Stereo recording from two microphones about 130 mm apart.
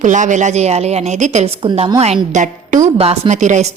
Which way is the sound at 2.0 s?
65° right (ahead or behind).